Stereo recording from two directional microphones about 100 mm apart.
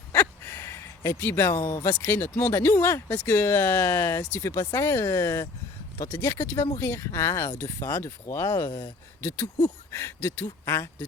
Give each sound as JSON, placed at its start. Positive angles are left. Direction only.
{"t": 0.1, "sound": "a sound", "side_deg": 25}
{"t": 1.6, "sound": "speech", "side_deg": 25}
{"t": 9.9, "sound": "speech", "side_deg": 25}